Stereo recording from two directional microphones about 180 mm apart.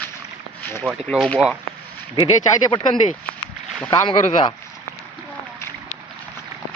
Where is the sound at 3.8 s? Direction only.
30° left (ahead or behind).